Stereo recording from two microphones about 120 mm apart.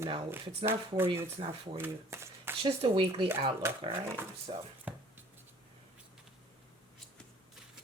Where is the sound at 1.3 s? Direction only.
45° right (ahead or behind).